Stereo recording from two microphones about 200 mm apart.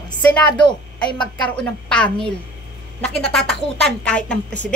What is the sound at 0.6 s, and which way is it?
Speech, 25° left (ahead or behind).